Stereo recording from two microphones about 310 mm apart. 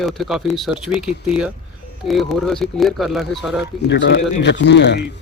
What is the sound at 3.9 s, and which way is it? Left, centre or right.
A man's voice, left.